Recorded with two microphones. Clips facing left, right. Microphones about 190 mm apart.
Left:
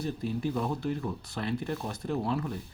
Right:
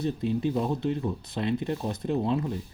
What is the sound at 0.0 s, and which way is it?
Speech, 20° right (ahead or behind).